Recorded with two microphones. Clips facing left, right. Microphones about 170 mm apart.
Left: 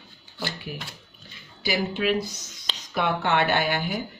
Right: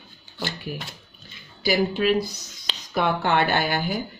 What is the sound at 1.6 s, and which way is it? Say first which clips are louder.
Speech: right 4 dB; 40° right (ahead or behind).